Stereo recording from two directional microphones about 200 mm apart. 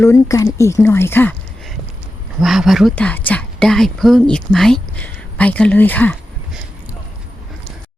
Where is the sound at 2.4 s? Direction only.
Centre (ahead or behind).